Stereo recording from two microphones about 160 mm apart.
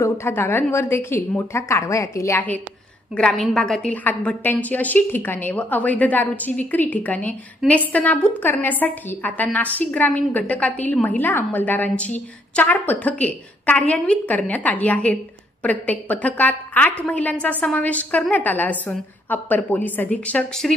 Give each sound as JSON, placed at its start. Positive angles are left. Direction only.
{"t": 0.0, "sound": "a woman's voice", "side_deg": 15}